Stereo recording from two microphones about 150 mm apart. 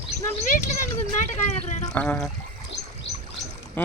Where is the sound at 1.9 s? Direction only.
10° left (ahead or behind).